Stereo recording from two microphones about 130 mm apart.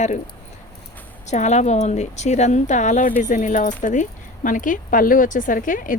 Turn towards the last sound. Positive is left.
turn(degrees=90)